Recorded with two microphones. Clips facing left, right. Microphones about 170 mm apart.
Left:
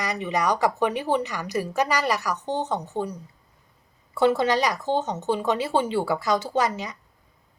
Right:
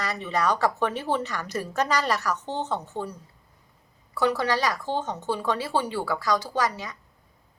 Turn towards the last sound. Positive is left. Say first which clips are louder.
# left 3 dB
turn(degrees=20)  # may be behind; listen again after turning